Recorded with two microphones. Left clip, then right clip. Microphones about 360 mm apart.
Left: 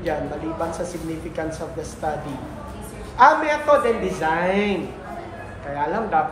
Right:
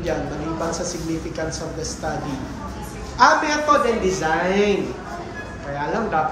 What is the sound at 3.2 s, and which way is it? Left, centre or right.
A man's voice, left.